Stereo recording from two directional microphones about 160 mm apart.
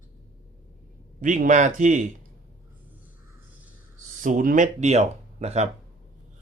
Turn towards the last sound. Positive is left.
turn(degrees=-45)  # may be behind; listen again after turning